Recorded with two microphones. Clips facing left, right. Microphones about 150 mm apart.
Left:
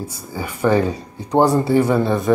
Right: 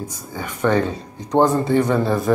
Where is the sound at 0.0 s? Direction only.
10° left (ahead or behind).